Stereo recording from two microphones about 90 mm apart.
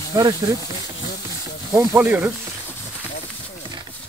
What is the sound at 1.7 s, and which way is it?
Speech, 30° right (ahead or behind).